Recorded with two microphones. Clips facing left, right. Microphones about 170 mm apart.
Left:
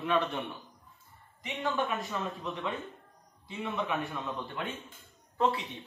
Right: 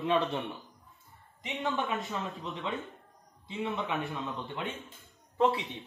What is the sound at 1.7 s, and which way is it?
Speech, 20° right (ahead or behind).